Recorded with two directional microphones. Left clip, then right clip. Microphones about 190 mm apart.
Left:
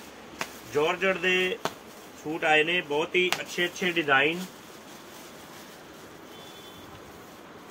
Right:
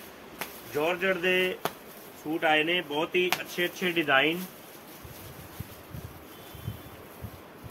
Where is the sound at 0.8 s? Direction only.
5° right (ahead or behind).